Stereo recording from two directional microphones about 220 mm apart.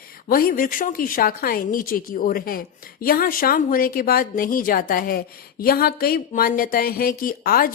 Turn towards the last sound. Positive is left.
turn(degrees=40)  # may be behind; listen again after turning